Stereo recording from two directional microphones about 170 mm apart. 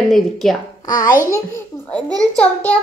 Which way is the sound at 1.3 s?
10° left (ahead or behind).